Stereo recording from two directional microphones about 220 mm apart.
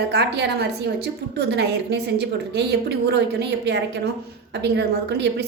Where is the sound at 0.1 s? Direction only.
50° right (ahead or behind).